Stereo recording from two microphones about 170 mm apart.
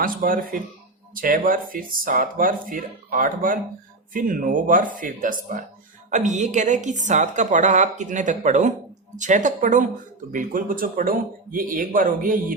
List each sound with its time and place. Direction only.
0.0 s a woman's voice: 55° right (ahead or behind)